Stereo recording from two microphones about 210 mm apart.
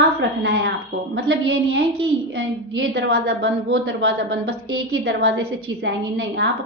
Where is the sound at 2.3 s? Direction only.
55° right (ahead or behind).